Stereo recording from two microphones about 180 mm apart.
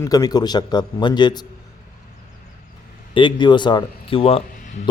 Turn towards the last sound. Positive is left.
turn(degrees=30)  # may be behind; listen again after turning